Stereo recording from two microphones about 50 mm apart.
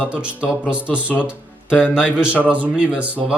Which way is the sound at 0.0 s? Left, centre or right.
Right.